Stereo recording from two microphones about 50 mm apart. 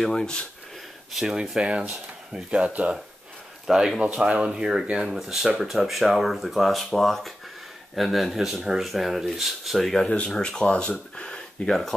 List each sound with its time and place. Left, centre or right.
0.0 s speech: centre
1.2 s speech: centre
3.6 s speech: centre
10.0 s speech: centre